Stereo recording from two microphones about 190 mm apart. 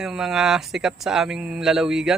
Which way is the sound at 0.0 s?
5° right (ahead or behind).